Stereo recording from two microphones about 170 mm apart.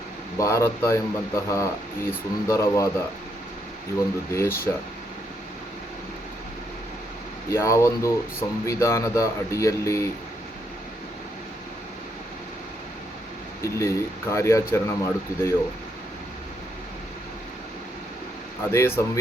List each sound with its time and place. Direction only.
0.3 s speech: 15° left (ahead or behind)
4.3 s speech: 15° left (ahead or behind)
7.5 s speech: 15° left (ahead or behind)
13.6 s speech: 15° left (ahead or behind)
18.7 s speech: 15° left (ahead or behind)